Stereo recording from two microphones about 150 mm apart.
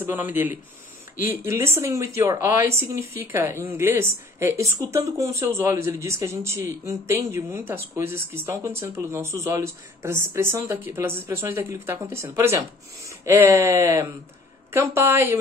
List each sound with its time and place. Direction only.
0.0 s a woman's voice: 15° right (ahead or behind)